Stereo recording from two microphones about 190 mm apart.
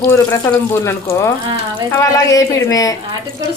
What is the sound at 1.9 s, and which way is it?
Speech, 15° left (ahead or behind).